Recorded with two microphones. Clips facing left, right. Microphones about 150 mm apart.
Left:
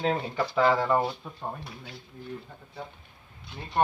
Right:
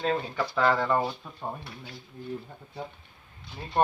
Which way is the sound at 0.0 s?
10° left (ahead or behind).